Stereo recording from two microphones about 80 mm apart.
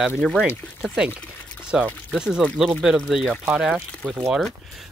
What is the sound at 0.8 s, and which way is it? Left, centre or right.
Speech, centre.